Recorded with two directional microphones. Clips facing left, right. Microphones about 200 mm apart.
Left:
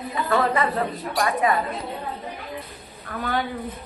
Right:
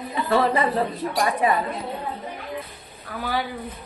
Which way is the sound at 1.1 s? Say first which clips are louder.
Left 1 dB; 25° right (ahead or behind).